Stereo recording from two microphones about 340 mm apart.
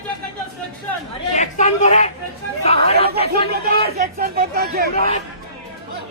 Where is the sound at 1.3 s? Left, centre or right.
Centre.